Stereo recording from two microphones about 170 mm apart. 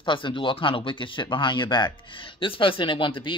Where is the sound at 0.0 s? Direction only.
30° left (ahead or behind).